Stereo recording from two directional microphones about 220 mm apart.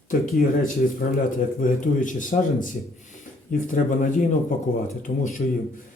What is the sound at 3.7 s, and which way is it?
A man's voice, 35° left (ahead or behind).